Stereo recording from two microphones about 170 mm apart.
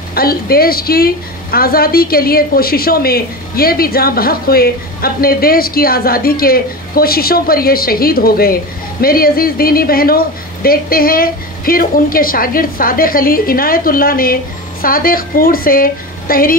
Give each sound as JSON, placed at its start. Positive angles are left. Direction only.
{"t": 0.1, "sound": "a woman's voice", "side_deg": 65}